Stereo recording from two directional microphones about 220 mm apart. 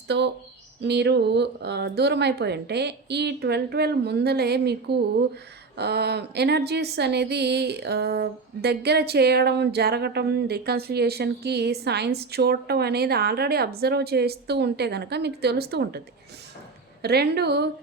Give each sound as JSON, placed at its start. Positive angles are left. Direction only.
{"t": 0.8, "sound": "speech", "side_deg": -50}
{"t": 17.0, "sound": "speech", "side_deg": -45}